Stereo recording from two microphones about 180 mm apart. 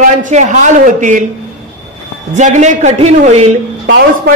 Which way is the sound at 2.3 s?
40° right (ahead or behind).